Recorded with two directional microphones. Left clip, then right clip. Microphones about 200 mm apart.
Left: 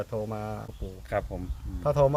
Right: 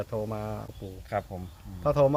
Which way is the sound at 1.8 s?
5° right (ahead or behind).